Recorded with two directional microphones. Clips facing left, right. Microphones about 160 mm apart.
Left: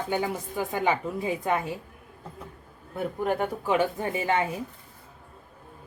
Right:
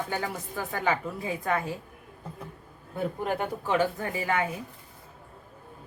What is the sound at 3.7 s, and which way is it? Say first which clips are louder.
Speech: left 1 dB; 20° left (ahead or behind).